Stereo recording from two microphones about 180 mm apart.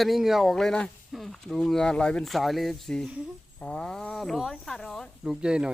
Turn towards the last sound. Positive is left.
turn(degrees=-5)  # may be behind; listen again after turning